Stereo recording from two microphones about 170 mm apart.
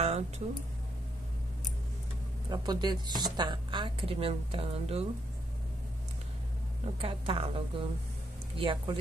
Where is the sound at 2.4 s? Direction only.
25° right (ahead or behind).